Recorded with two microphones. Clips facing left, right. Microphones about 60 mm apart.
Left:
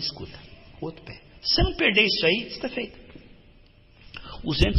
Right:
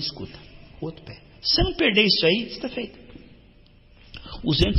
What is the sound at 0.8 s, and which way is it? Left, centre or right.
Speech, left.